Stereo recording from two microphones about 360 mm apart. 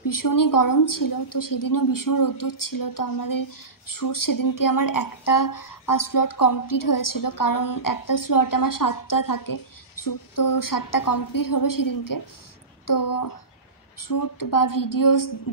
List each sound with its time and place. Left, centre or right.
0.0 s speech: left